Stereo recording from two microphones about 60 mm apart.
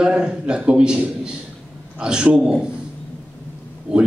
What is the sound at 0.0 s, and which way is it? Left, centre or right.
A man's voice, centre.